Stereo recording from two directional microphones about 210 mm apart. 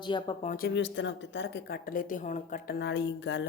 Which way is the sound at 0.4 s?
40° left (ahead or behind).